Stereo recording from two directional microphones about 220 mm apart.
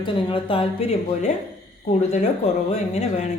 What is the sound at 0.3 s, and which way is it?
A woman's voice, 25° left (ahead or behind).